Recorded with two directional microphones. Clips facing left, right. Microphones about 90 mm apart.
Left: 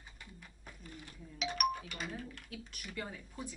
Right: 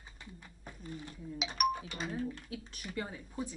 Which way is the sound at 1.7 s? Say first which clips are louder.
Right 4 dB; 25° right (ahead or behind).